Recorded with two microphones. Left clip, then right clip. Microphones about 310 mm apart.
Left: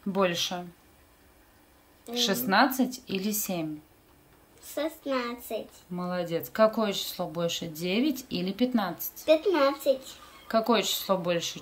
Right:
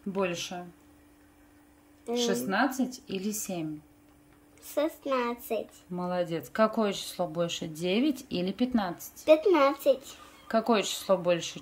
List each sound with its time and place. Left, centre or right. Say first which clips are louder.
0.1 s speech: left 5 dB; centre
2.1 s speech: left 4 dB; centre
4.7 s a woman's voice: right 2 dB; right
5.9 s speech: even; centre
9.2 s a woman's voice: right 1 dB; right
10.5 s speech: left 2 dB; centre